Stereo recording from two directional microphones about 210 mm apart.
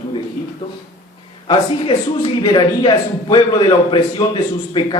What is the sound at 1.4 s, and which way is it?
A man's voice, 25° left (ahead or behind).